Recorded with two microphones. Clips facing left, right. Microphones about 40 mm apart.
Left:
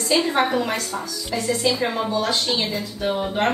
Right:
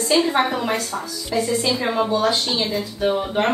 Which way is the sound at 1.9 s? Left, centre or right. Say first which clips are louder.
Right 3 dB; right.